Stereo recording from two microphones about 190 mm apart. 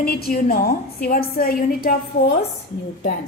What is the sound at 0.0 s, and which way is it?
A woman's voice, 55° left (ahead or behind).